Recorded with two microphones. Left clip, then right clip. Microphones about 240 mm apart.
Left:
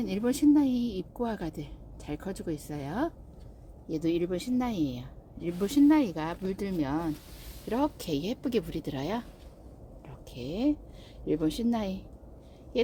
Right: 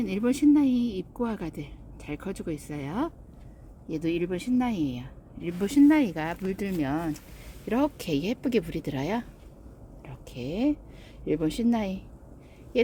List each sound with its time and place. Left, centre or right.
0.0 s speech: centre